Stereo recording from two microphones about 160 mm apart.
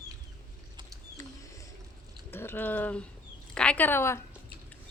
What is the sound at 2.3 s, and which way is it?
Speech, 15° left (ahead or behind).